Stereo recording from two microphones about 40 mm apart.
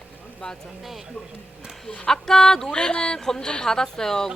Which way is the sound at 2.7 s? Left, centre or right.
Left.